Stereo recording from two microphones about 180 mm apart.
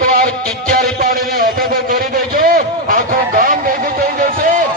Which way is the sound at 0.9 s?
55° right (ahead or behind).